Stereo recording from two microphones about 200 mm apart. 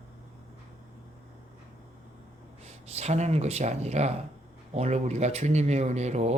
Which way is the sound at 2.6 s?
35° right (ahead or behind).